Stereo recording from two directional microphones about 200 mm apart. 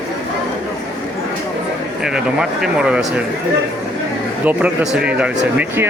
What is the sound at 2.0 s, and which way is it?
Speech, 5° right (ahead or behind).